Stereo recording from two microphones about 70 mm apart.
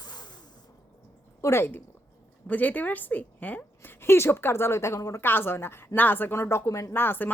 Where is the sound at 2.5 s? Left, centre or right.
Left.